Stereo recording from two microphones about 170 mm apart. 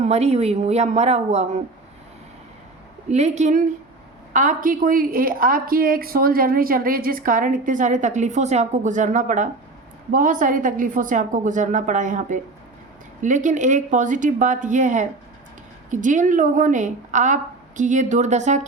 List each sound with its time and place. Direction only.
0.0 s a woman's voice: 40° right (ahead or behind)
3.1 s a woman's voice: 40° right (ahead or behind)